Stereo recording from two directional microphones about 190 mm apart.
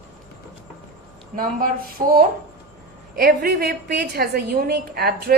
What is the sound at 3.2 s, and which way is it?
A woman's voice, 55° right (ahead or behind).